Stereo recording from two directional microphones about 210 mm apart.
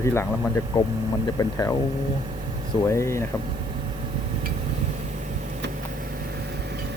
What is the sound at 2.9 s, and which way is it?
Speech, 15° left (ahead or behind).